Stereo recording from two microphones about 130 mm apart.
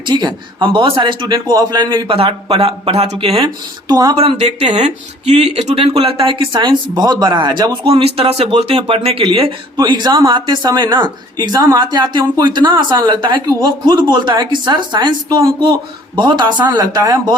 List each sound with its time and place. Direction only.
0.0 s speech: 35° right (ahead or behind)
4.2 s speech: 50° right (ahead or behind)
9.7 s speech: 35° right (ahead or behind)